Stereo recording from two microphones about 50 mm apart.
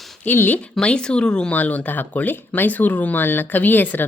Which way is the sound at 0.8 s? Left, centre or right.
Centre.